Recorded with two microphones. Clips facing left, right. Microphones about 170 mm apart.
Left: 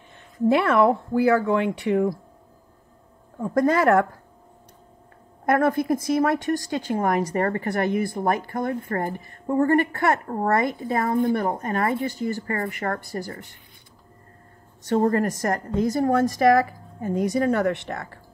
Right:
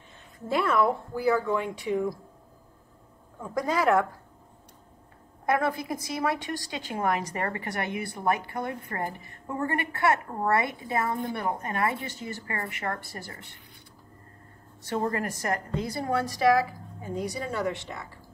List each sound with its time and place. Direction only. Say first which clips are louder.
0.5 s speech: left 6 dB; 70° left (ahead or behind)
3.5 s speech: left 6 dB; 55° left (ahead or behind)
5.4 s a woman's voice: left 6 dB; 50° left (ahead or behind)
14.9 s a woman's voice: left 8 dB; 40° left (ahead or behind); by 18.2 s 60° left (ahead or behind)